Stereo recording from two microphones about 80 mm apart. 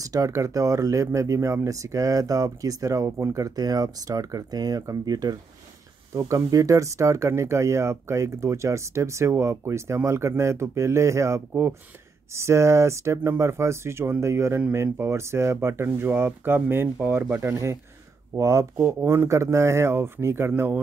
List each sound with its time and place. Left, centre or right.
0.0 s speech: right